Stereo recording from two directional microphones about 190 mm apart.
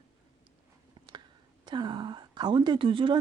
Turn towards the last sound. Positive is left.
turn(degrees=-25)  # may be behind; listen again after turning